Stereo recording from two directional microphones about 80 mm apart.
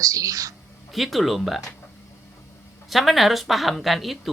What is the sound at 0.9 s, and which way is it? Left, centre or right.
Speech, centre.